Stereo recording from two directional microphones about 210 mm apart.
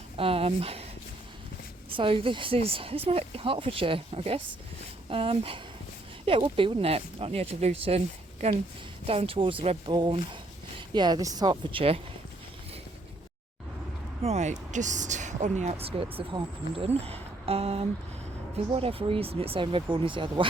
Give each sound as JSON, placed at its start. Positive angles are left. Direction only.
{"t": 0.2, "sound": "speech", "side_deg": -25}
{"t": 1.9, "sound": "speech", "side_deg": -25}
{"t": 14.2, "sound": "speech", "side_deg": -30}